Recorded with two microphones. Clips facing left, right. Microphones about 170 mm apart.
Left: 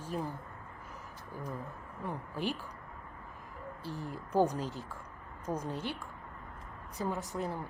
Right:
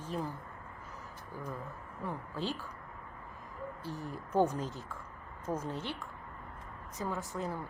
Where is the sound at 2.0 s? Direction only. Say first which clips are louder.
Left 1 dB; 15° left (ahead or behind).